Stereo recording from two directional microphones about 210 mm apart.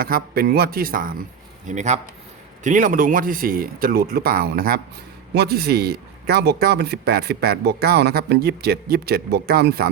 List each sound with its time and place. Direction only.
0.0 s speech: 45° right (ahead or behind)